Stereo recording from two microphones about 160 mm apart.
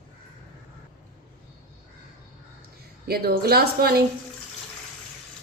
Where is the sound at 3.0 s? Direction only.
75° right (ahead or behind).